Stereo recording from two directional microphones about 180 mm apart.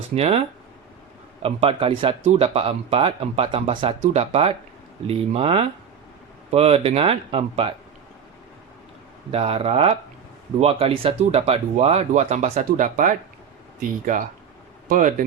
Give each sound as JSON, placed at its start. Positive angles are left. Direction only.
{"t": 0.1, "sound": "speech", "side_deg": -35}
{"t": 9.3, "sound": "speech", "side_deg": -30}